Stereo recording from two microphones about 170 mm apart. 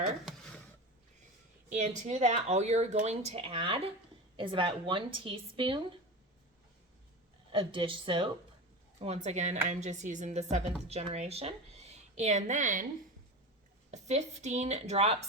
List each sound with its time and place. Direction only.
1.7 s speech: 45° right (ahead or behind)
7.5 s speech: 30° right (ahead or behind)
9.0 s a woman's voice: 40° right (ahead or behind)
13.9 s speech: 40° right (ahead or behind)